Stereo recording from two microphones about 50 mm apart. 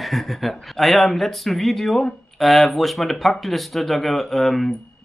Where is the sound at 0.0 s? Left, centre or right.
Centre.